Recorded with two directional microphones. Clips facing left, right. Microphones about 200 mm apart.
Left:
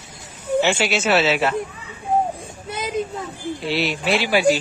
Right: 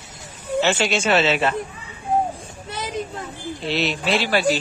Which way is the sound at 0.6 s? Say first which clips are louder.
Right 3 dB; 10° left (ahead or behind).